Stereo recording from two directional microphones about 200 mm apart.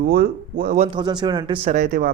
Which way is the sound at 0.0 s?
50° right (ahead or behind).